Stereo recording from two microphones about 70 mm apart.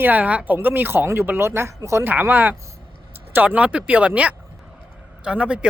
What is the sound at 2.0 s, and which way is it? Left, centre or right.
Speech, right.